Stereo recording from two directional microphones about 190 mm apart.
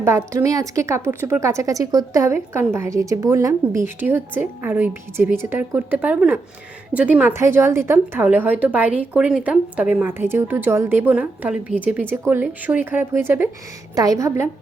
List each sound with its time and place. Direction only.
0.0 s a woman's voice: 15° right (ahead or behind)